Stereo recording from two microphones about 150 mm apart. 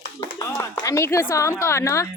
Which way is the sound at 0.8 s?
20° left (ahead or behind).